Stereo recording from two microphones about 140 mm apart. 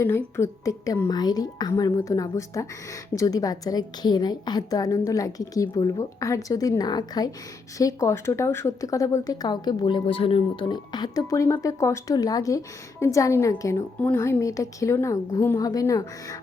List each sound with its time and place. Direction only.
0.3 s speech: 20° left (ahead or behind)